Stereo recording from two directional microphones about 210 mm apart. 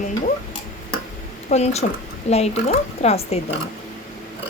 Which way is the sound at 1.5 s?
30° left (ahead or behind).